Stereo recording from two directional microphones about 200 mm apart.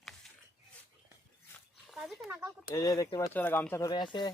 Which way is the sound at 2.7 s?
15° left (ahead or behind).